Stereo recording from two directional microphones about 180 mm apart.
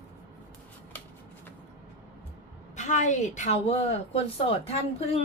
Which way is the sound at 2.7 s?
40° left (ahead or behind).